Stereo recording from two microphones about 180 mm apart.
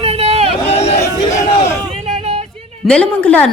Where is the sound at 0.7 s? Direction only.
35° left (ahead or behind).